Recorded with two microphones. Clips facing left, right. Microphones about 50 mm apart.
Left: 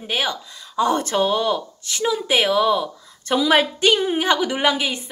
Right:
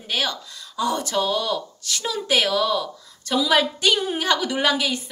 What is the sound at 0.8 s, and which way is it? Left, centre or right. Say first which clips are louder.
A woman's voice: left 4 dB; left.